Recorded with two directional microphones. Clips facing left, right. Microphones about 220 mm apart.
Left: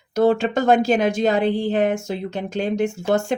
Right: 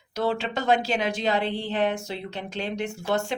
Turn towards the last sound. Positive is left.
turn(degrees=45)  # may be behind; listen again after turning